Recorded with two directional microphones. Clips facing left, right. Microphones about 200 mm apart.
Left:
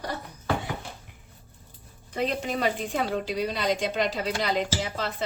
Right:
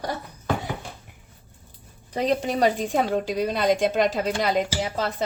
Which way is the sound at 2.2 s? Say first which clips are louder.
Right 5 dB; 40° right (ahead or behind).